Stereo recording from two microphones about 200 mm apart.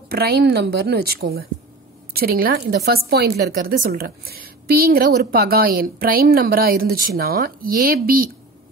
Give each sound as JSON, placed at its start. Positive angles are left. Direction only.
{"t": 0.1, "sound": "a woman's voice", "side_deg": -50}